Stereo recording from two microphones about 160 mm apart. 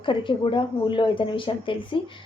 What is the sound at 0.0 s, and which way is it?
A woman's voice, 30° left (ahead or behind).